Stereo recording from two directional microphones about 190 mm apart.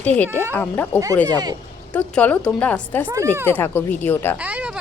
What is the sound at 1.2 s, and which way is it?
Speech, 20° right (ahead or behind).